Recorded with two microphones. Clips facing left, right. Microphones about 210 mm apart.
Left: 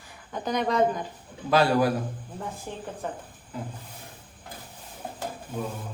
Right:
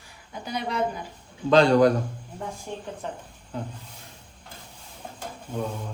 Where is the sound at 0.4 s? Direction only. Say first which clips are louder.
Left 4 dB; 55° left (ahead or behind).